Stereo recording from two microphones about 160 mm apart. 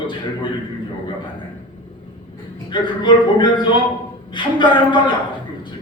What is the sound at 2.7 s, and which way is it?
A man's voice, 30° left (ahead or behind).